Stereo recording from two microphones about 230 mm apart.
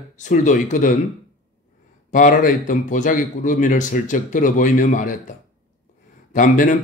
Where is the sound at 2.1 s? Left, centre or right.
Left.